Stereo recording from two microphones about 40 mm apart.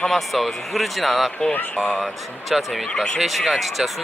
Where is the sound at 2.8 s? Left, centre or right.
Left.